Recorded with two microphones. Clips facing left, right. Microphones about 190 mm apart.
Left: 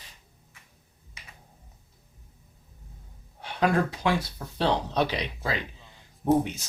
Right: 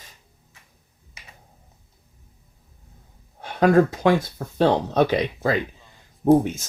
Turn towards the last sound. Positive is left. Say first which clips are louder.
# right 6 dB
turn(degrees=-45)  # may be behind; listen again after turning